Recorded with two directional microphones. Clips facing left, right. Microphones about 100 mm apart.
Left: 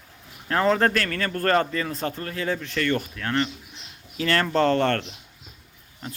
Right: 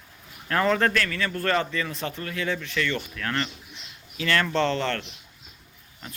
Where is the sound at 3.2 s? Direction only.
25° left (ahead or behind).